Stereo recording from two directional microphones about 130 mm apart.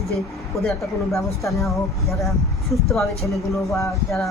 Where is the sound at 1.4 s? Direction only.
25° left (ahead or behind).